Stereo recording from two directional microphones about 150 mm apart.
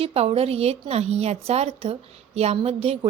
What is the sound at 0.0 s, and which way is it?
A woman's voice, 40° right (ahead or behind).